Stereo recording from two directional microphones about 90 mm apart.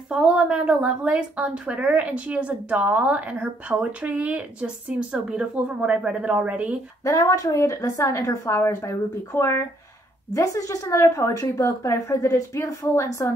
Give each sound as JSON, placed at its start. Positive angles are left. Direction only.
{"t": 0.1, "sound": "a woman's voice", "side_deg": -10}
{"t": 7.1, "sound": "a woman's voice", "side_deg": 35}